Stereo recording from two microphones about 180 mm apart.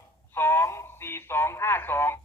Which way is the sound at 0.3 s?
15° left (ahead or behind).